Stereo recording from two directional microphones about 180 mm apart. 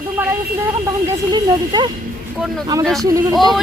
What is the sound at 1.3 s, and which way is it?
Speech, 25° right (ahead or behind).